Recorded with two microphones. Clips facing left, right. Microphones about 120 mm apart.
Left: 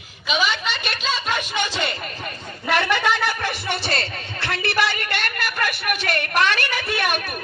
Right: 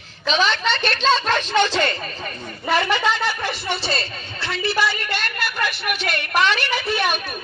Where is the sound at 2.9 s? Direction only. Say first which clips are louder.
Even; 55° left (ahead or behind).